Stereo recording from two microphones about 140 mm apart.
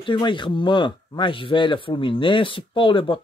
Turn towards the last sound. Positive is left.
turn(degrees=40)  # may be behind; listen again after turning